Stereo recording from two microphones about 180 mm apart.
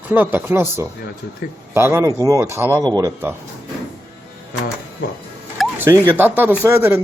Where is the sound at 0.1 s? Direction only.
10° right (ahead or behind).